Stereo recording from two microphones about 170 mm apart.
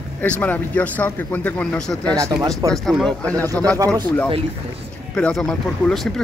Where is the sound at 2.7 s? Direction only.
Centre (ahead or behind).